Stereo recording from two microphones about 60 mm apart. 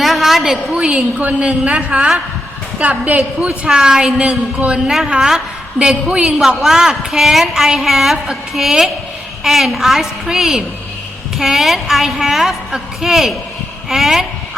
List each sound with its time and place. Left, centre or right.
0.0 s a woman's voice: centre